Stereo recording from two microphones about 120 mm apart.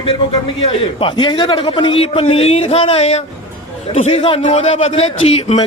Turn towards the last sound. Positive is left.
turn(degrees=55)  # may be behind; listen again after turning